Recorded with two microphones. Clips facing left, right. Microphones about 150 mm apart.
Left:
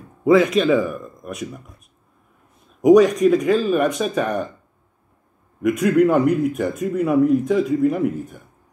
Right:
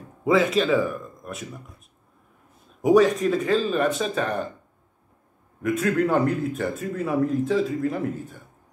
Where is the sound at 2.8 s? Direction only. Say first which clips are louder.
Left 5 dB; 15° left (ahead or behind).